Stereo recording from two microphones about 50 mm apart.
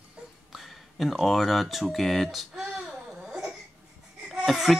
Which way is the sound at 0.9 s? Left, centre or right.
Centre.